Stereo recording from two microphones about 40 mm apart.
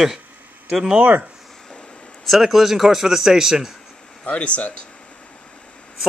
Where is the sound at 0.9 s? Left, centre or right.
Right.